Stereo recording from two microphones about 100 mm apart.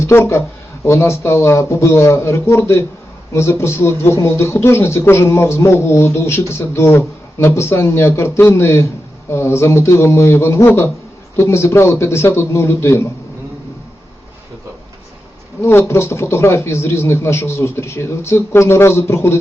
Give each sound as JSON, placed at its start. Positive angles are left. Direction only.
{"t": 0.1, "sound": "a man's voice", "side_deg": 25}
{"t": 15.6, "sound": "a man's voice", "side_deg": 25}